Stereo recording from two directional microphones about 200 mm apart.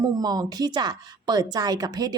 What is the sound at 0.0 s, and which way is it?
Speech, 20° right (ahead or behind).